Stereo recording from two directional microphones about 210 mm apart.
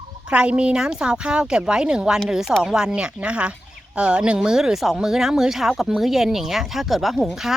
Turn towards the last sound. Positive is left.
turn(degrees=0)  # may be behind; listen again after turning